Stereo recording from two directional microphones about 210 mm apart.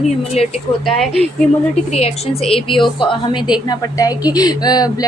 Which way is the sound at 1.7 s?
30° left (ahead or behind).